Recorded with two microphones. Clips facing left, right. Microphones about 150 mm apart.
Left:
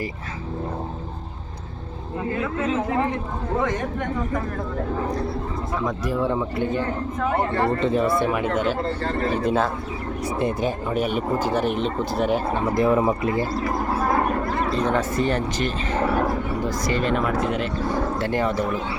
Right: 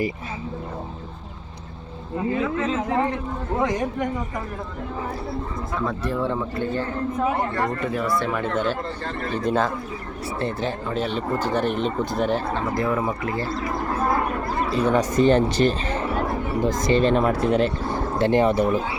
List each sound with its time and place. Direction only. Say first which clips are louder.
2.3 s speech: even; 5° left (ahead or behind)
3.6 s speech: right 4 dB; 15° right (ahead or behind)
5.8 s speech: left 1 dB; 10° left (ahead or behind)
7.5 s speech: left 4 dB; 25° left (ahead or behind)
8.3 s speech: left 1 dB; 10° left (ahead or behind)
9.0 s speech: left 4 dB; 45° left (ahead or behind)
9.4 s speech: right 2 dB; 5° left (ahead or behind)
10.2 s speech: left 2 dB; 15° left (ahead or behind)
12.7 s speech: left 7 dB; 25° left (ahead or behind)
14.8 s speech: right 6 dB; 10° right (ahead or behind); by 15.7 s 30° right (ahead or behind)
16.8 s speech: right 5 dB; 25° right (ahead or behind)
18.2 s speech: right 9 dB; 20° right (ahead or behind)